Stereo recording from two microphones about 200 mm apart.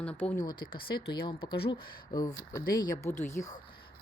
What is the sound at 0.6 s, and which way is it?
Speech, 50° left (ahead or behind).